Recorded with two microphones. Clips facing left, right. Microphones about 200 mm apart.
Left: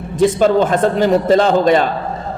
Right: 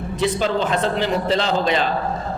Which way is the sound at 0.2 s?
50° left (ahead or behind).